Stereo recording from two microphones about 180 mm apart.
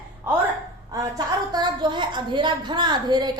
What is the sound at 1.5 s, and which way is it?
A woman's voice, 25° right (ahead or behind).